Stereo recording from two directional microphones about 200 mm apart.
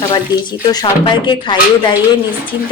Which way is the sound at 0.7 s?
20° left (ahead or behind).